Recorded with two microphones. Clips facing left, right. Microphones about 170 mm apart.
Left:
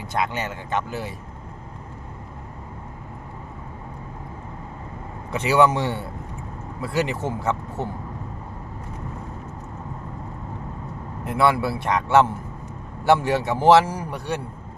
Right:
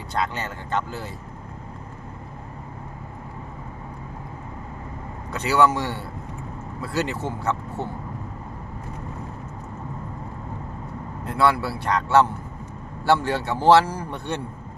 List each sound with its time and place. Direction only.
0.2 s a man's voice: 15° left (ahead or behind)
5.4 s a man's voice: 20° left (ahead or behind)
11.3 s a man's voice: 20° left (ahead or behind)